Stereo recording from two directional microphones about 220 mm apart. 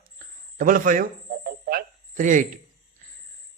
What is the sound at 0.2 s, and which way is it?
Cricket, 35° right (ahead or behind).